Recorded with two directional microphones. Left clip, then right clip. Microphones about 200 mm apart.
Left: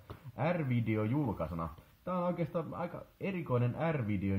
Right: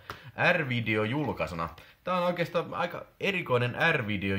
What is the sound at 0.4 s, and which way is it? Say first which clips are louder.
Speech: right 9 dB; 10° right (ahead or behind).